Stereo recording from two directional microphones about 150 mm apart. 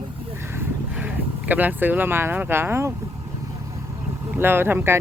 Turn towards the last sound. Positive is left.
turn(degrees=-15)  # may be behind; listen again after turning